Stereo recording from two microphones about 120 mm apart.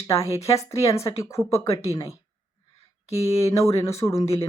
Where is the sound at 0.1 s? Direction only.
25° left (ahead or behind).